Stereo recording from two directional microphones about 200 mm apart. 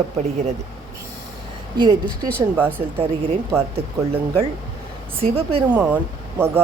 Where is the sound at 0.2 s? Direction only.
35° right (ahead or behind).